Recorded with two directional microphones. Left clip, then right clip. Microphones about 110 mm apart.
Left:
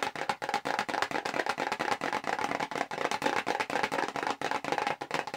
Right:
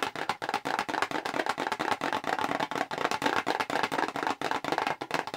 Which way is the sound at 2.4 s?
35° right (ahead or behind).